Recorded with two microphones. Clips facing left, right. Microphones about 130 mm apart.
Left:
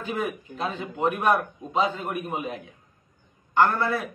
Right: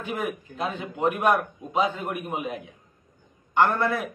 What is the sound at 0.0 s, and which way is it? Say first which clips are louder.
A man's voice: left 1 dB; 15° right (ahead or behind).